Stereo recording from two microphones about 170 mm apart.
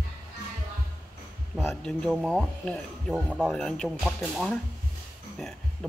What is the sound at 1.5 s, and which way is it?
Speech, centre (ahead or behind).